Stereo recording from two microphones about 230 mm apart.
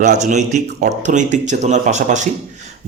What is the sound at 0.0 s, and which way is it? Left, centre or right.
Speech, right.